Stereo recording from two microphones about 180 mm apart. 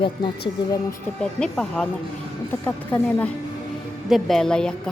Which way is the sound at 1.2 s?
5° left (ahead or behind).